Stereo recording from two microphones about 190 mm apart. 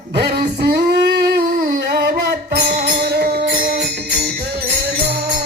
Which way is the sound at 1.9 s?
55° right (ahead or behind).